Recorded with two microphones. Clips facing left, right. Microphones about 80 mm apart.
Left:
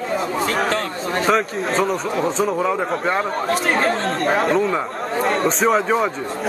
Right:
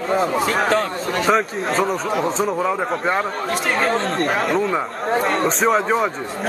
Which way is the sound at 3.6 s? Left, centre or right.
Left.